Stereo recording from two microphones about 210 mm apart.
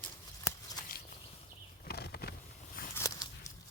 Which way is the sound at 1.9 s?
50° left (ahead or behind).